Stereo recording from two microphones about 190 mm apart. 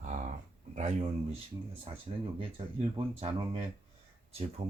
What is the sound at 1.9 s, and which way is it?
Speech, 30° right (ahead or behind).